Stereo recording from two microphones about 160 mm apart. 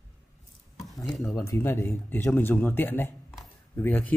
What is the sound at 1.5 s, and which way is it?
A man's voice, 15° left (ahead or behind).